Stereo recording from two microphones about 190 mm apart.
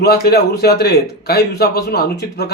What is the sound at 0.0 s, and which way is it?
Speech, 55° left (ahead or behind).